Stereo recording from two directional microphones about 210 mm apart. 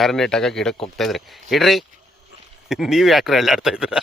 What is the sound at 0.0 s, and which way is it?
A man's voice, centre (ahead or behind).